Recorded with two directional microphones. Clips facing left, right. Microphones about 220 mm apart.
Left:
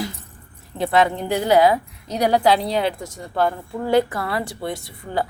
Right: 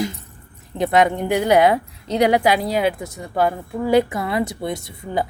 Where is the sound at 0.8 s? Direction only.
20° right (ahead or behind).